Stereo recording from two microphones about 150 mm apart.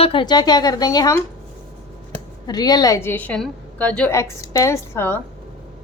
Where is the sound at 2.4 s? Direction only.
25° left (ahead or behind); by 4.1 s 10° left (ahead or behind).